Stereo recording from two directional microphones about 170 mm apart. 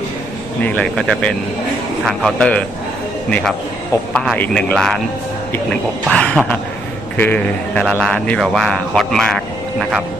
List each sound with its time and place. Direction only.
0.6 s a man's voice: 10° left (ahead or behind)
6.1 s a man's voice: 5° left (ahead or behind)